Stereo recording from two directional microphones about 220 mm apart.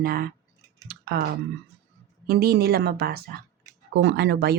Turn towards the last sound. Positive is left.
turn(degrees=-50)  # may be behind; listen again after turning